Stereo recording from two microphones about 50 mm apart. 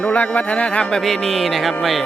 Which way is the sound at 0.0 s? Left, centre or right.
Left.